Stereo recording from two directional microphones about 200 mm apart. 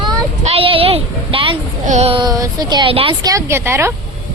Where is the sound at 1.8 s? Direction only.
35° right (ahead or behind); by 3.9 s 15° right (ahead or behind).